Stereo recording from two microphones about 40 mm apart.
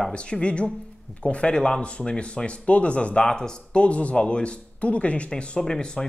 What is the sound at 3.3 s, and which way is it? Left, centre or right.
Speech, centre.